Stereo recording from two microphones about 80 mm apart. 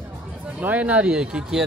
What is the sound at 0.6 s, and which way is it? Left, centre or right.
Speech, centre.